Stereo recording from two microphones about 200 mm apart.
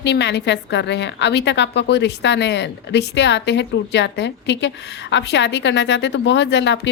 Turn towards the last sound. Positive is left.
turn(degrees=60)  # may be behind; listen again after turning